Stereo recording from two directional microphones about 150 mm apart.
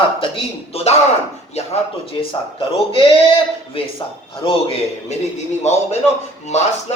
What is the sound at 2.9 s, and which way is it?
Speech, 40° left (ahead or behind).